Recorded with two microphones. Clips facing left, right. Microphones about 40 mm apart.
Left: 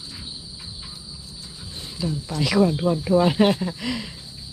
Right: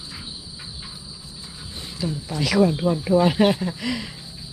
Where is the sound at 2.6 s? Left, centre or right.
Centre.